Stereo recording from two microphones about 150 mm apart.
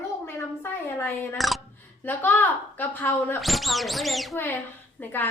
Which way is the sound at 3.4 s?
Centre (ahead or behind).